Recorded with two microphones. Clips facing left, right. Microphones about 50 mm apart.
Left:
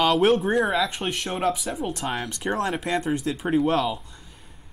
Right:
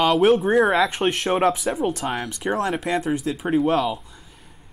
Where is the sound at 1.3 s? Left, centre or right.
Centre.